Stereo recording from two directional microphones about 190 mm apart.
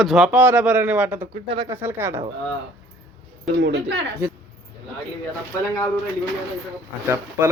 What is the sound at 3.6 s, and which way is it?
Speech, 65° right (ahead or behind).